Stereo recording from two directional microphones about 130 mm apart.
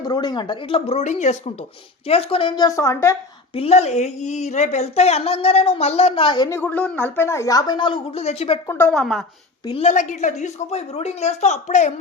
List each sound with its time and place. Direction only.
0.0 s speech: 30° left (ahead or behind)
2.6 s speech: 25° left (ahead or behind)
3.5 s speech: 50° left (ahead or behind)
6.5 s speech: 10° left (ahead or behind); by 8.2 s 40° left (ahead or behind)
8.2 s speech: 55° left (ahead or behind)
8.6 s speech: 20° left (ahead or behind)
8.9 s speech: 5° left (ahead or behind)
9.8 s speech: 70° left (ahead or behind)